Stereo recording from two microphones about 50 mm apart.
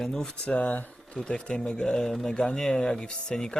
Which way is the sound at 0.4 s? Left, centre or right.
Left.